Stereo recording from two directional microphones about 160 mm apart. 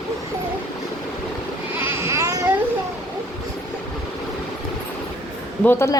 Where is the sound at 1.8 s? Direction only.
15° right (ahead or behind).